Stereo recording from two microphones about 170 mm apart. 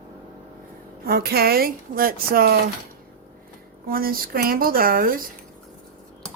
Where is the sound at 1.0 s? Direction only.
65° right (ahead or behind).